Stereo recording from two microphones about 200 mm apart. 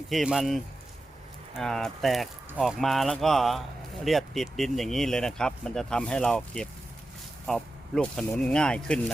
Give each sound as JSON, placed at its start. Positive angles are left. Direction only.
{"t": 0.1, "sound": "speech", "side_deg": 0}